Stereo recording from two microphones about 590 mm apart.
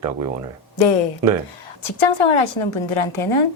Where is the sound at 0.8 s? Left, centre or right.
Left.